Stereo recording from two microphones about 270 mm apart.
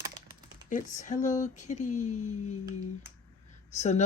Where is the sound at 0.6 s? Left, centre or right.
Left.